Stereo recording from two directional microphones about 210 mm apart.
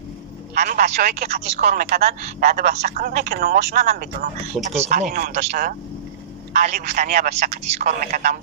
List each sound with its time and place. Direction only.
0.6 s a man's voice: 35° right (ahead or behind)
1.9 s speech: 45° right (ahead or behind)
4.7 s a man's voice: 35° right (ahead or behind)